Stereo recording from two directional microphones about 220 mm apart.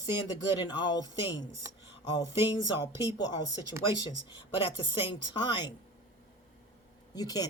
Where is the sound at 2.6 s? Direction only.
15° left (ahead or behind).